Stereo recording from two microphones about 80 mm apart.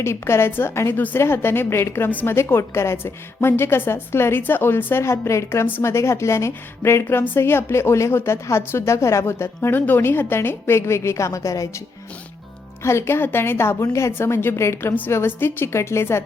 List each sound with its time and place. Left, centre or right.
0.0 s speech: left
12.8 s speech: left